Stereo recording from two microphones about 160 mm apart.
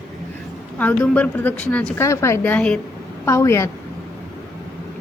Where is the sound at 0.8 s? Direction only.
10° left (ahead or behind).